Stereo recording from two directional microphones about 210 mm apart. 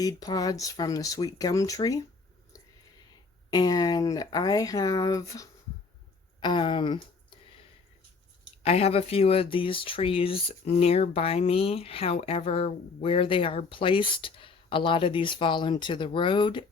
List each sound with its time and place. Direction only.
0.0 s speech: 15° left (ahead or behind)
3.5 s speech: 20° left (ahead or behind)
8.6 s speech: 30° left (ahead or behind)